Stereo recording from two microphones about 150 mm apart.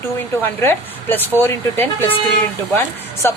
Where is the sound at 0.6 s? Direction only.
15° left (ahead or behind).